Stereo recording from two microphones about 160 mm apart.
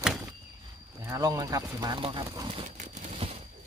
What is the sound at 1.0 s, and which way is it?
Speech, 20° right (ahead or behind).